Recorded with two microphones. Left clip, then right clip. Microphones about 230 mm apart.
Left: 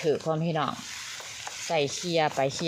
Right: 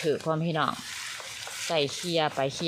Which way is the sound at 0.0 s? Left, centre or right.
Centre.